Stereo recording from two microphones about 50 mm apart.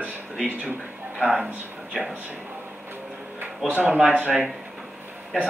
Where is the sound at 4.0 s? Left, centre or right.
Right.